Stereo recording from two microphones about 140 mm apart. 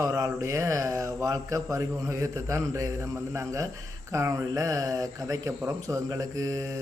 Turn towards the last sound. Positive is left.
turn(degrees=-25)  # may be behind; listen again after turning